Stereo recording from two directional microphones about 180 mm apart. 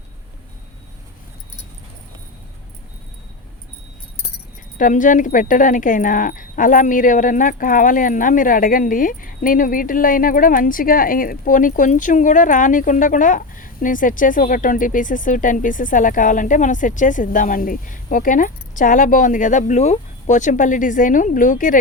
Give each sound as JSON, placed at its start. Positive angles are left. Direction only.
{"t": 4.8, "sound": "speech", "side_deg": 45}